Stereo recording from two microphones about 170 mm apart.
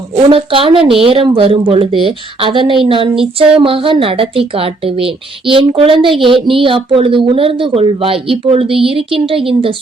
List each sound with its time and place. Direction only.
0.2 s speech: 30° right (ahead or behind)